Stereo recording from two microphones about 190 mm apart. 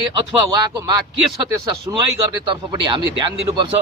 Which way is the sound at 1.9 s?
15° right (ahead or behind).